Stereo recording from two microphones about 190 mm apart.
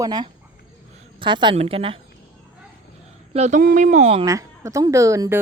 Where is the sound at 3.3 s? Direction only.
35° right (ahead or behind).